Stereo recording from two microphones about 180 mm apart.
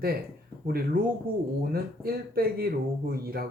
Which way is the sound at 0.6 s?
50° right (ahead or behind).